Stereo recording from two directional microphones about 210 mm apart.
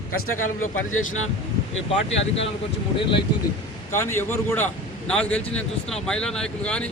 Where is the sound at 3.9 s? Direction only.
10° left (ahead or behind).